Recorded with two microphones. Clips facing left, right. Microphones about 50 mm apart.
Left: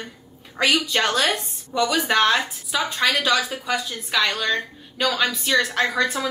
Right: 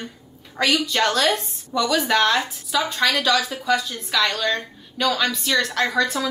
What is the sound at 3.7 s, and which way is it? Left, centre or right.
A woman's voice, centre.